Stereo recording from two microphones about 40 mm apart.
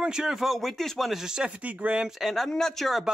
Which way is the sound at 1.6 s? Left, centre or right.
Right.